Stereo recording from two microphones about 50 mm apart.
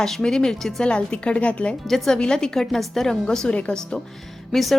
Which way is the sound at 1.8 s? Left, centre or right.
Centre.